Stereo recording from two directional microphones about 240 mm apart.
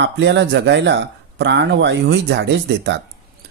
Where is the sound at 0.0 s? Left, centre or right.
Right.